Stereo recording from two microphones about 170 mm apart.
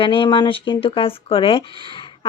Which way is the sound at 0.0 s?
30° left (ahead or behind).